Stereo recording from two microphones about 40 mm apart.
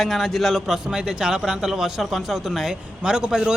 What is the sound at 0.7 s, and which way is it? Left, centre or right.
Speech, centre.